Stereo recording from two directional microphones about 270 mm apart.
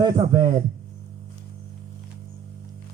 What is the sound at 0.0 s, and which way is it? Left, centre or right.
Speech, centre.